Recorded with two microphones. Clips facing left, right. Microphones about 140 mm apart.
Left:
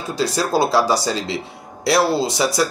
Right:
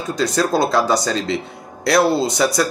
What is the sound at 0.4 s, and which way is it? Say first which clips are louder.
Speech: even; 5° left (ahead or behind).